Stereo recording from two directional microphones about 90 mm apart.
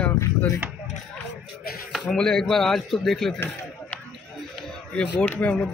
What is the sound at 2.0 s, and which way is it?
Speech, 10° left (ahead or behind).